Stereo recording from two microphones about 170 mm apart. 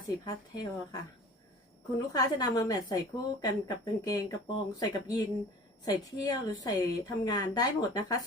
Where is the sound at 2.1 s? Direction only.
20° left (ahead or behind).